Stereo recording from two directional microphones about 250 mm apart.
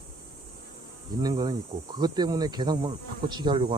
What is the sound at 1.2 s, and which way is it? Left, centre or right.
Speech, centre.